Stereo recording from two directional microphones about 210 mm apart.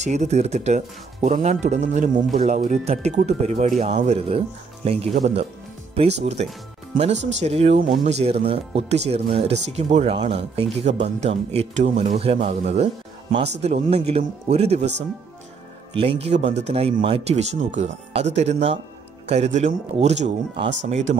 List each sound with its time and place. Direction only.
0.0 s speech: 35° right (ahead or behind)
15.9 s speech: 25° right (ahead or behind)
20.6 s speech: 55° right (ahead or behind)
20.9 s speech: 35° right (ahead or behind)